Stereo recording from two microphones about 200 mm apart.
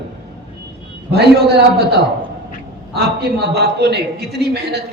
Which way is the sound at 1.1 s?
55° right (ahead or behind).